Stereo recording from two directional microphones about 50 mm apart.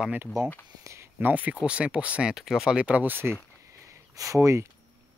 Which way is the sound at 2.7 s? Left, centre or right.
Right.